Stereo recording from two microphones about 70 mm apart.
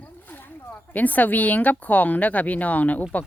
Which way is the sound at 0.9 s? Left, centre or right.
Left.